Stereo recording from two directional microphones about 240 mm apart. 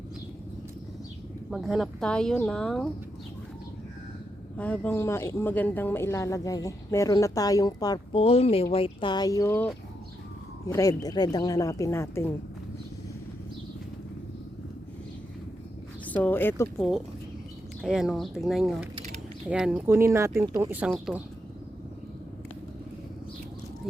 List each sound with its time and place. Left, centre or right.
1.5 s speech: centre
4.5 s speech: centre
16.0 s speech: centre